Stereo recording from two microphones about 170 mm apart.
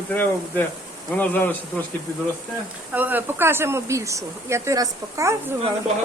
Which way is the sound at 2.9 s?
10° right (ahead or behind).